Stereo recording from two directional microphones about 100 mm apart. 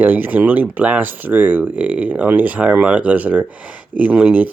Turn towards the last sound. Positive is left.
turn(degrees=-15)  # may be behind; listen again after turning